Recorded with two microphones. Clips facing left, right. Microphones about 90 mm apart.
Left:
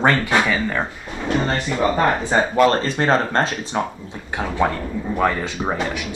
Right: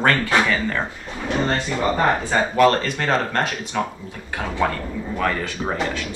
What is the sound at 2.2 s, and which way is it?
Speech, 25° left (ahead or behind).